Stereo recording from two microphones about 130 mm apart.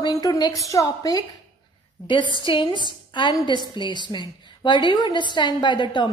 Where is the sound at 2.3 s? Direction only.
40° left (ahead or behind).